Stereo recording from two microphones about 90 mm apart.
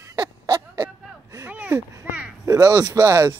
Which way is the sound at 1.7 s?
15° right (ahead or behind).